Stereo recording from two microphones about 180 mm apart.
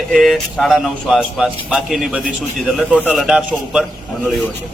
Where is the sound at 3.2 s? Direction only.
5° right (ahead or behind).